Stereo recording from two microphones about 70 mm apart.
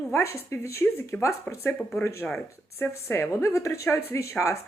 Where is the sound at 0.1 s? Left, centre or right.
Left.